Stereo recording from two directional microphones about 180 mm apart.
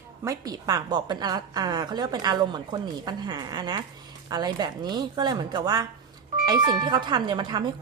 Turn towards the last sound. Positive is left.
turn(degrees=-25)  # may be behind; listen again after turning